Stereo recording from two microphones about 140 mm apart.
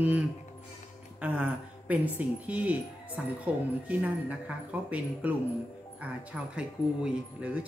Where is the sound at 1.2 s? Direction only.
10° right (ahead or behind).